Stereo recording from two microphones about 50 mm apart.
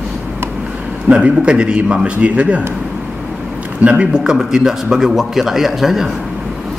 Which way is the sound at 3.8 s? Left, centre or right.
Right.